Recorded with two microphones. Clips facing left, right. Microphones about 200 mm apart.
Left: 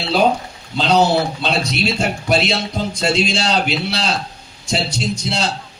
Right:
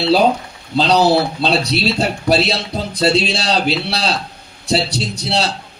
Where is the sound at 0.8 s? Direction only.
35° right (ahead or behind).